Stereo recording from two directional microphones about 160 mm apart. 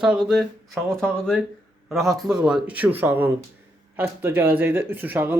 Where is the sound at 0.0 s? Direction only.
5° right (ahead or behind).